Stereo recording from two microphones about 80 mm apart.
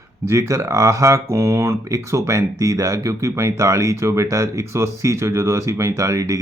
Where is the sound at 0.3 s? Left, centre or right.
Right.